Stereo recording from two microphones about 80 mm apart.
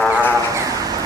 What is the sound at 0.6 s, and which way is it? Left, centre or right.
Vehicle, right.